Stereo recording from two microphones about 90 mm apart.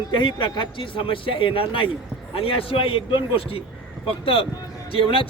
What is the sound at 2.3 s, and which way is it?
A man's voice, 90° left.